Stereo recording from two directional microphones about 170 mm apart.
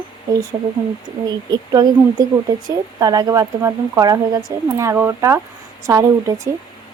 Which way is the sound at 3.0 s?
20° right (ahead or behind).